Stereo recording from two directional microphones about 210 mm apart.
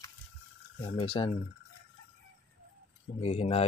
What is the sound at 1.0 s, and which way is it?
Speech, 25° left (ahead or behind).